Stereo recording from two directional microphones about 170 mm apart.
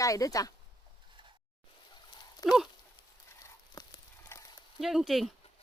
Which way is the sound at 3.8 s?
20° left (ahead or behind).